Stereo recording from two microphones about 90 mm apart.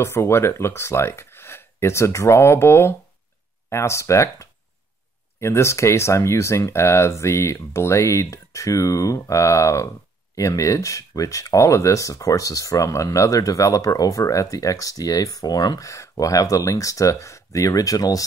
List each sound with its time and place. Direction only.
0.0 s speech: 30° left (ahead or behind)